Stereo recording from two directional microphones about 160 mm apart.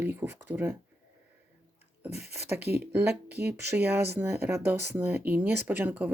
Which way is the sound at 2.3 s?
15° right (ahead or behind).